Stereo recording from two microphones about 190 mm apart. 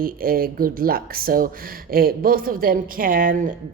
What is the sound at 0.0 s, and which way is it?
Speech, 50° right (ahead or behind).